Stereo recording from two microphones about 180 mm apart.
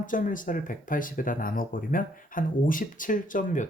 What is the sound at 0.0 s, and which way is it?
Speech, 45° left (ahead or behind).